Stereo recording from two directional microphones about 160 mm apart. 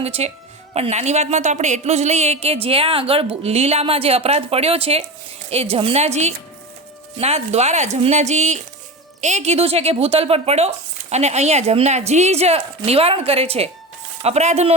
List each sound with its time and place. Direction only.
0.0 s a woman's voice: 40° right (ahead or behind)